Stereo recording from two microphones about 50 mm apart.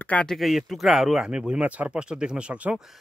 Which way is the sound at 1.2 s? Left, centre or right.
Centre.